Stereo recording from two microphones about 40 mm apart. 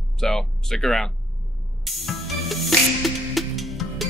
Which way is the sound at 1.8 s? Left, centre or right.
Centre.